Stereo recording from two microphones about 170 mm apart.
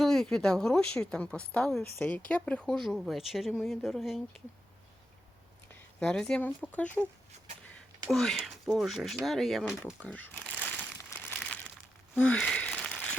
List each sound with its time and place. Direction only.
0.0 s a woman's voice: centre (ahead or behind)
5.7 s speech: 5° left (ahead or behind)
8.1 s a woman's voice: centre (ahead or behind)
11.3 s crumpling: 5° left (ahead or behind)
12.1 s a sound: 5° left (ahead or behind)